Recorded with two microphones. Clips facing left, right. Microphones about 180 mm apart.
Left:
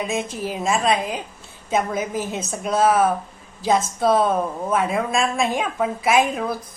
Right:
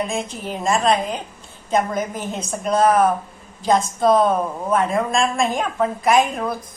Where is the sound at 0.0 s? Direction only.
5° left (ahead or behind).